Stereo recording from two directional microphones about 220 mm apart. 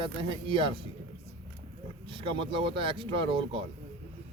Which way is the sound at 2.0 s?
20° right (ahead or behind).